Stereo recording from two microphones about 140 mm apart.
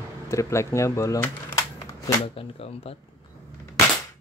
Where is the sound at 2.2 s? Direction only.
45° left (ahead or behind).